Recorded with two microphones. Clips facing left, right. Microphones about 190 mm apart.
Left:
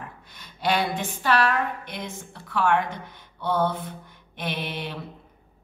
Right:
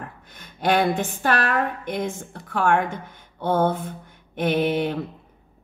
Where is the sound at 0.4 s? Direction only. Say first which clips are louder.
Right 4 dB; 50° right (ahead or behind).